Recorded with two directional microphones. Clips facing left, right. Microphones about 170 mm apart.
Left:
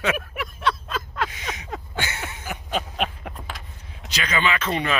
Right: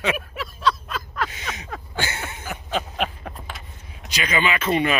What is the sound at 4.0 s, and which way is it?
Speech, 10° right (ahead or behind).